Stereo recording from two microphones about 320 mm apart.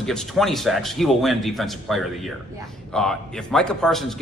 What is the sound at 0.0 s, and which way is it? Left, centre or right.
A man's voice, centre.